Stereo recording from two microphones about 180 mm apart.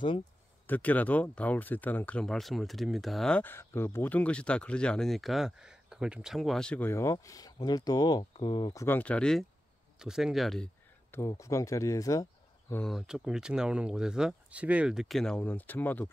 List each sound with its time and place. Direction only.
0.7 s speech: 10° left (ahead or behind); by 8.8 s 25° left (ahead or behind)
8.8 s speech: 10° left (ahead or behind)
11.1 s speech: 15° left (ahead or behind)
12.8 s speech: centre (ahead or behind)